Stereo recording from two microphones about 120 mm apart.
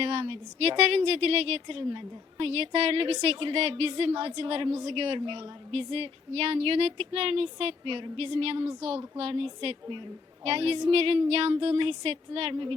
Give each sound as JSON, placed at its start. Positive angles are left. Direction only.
{"t": 0.0, "sound": "a woman's voice", "side_deg": -45}